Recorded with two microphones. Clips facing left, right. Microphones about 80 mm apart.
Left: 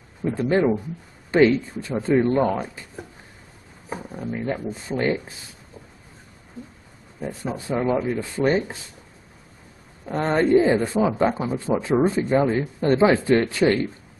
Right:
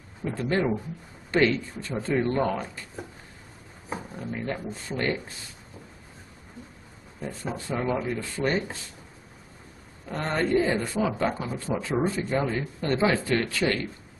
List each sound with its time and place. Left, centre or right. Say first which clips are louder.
0.2 s speech: left 6 dB; centre
3.9 s speech: left 4 dB; centre
7.2 s speech: left 4 dB; centre
10.0 s speech: left 7 dB; left